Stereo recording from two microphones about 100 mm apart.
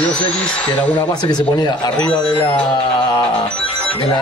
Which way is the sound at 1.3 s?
45° left (ahead or behind).